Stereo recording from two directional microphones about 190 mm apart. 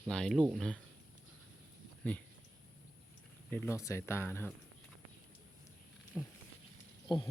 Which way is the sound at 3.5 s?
10° left (ahead or behind).